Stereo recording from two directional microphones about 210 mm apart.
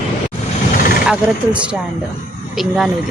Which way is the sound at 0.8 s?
40° left (ahead or behind).